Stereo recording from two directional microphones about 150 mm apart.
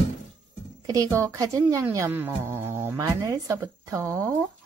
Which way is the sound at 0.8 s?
20° right (ahead or behind).